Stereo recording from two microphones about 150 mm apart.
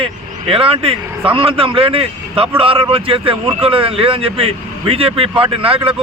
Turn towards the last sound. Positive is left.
turn(degrees=-40)  # may be behind; listen again after turning